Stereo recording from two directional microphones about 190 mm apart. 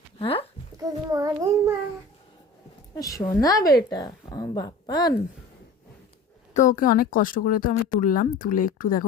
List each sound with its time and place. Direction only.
0.2 s a woman's voice: 30° left (ahead or behind)
0.8 s child singing: 20° right (ahead or behind)
2.9 s speech: 20° left (ahead or behind)
6.5 s a woman's voice: 40° left (ahead or behind)